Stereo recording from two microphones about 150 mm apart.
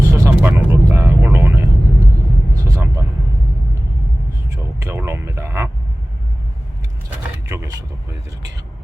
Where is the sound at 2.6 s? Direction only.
20° right (ahead or behind).